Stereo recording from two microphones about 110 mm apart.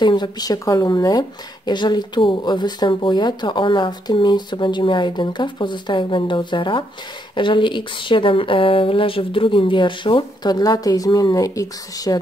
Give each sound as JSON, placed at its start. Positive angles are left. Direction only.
{"t": 0.0, "sound": "speech", "side_deg": 45}